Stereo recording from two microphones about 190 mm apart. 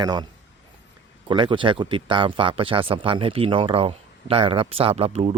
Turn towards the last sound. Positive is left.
turn(degrees=-35)  # may be behind; listen again after turning